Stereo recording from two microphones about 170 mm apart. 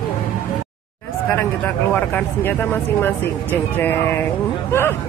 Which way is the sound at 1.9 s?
10° left (ahead or behind).